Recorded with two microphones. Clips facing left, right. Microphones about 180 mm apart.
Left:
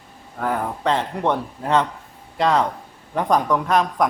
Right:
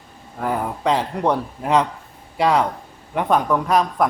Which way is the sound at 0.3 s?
10° right (ahead or behind).